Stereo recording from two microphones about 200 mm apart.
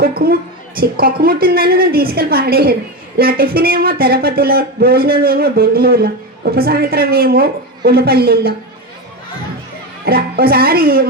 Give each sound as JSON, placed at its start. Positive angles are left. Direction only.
{"t": 0.0, "sound": "a woman's voice", "side_deg": -50}
{"t": 10.1, "sound": "speech", "side_deg": -50}